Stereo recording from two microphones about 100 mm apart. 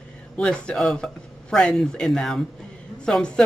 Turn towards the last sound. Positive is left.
turn(degrees=10)  # may be behind; listen again after turning